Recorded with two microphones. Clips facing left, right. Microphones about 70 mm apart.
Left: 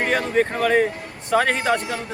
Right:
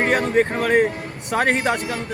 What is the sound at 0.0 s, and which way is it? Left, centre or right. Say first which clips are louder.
Speech: right 2 dB; right.